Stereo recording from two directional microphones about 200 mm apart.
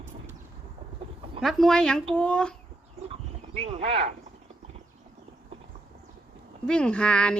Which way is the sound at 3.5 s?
30° right (ahead or behind).